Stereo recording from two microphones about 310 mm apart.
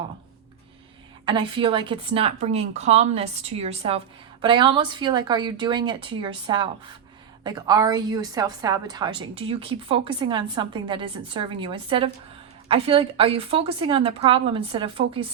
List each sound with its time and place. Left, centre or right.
1.2 s a woman's voice: centre